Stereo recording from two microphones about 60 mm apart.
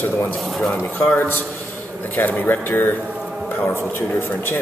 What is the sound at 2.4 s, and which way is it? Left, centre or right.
A man's voice, left.